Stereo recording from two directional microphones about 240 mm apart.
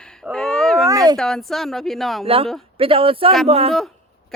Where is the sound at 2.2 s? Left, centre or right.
Right.